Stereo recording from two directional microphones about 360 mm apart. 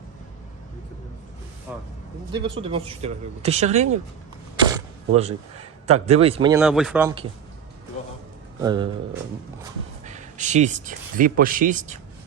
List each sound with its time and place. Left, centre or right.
1.7 s speech: centre
4.5 s a sound: centre
6.1 s speech: centre
8.6 s speech: centre
10.1 s speech: centre